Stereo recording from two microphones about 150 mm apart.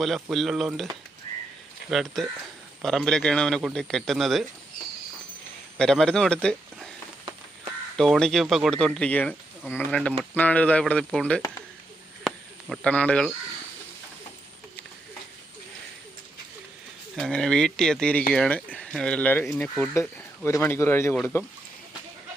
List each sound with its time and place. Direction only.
0.0 s a man's voice: centre (ahead or behind)
1.9 s a man's voice: centre (ahead or behind)
5.7 s speech: 5° left (ahead or behind)
7.9 s a man's voice: centre (ahead or behind)
12.2 s a sound: centre (ahead or behind)
12.9 s speech: 10° left (ahead or behind)
17.2 s speech: centre (ahead or behind)